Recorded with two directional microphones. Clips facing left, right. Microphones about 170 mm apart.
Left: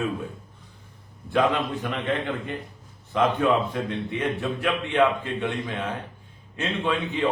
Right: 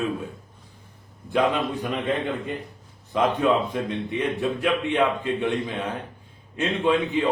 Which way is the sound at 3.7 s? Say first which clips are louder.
Right 2 dB; 15° right (ahead or behind).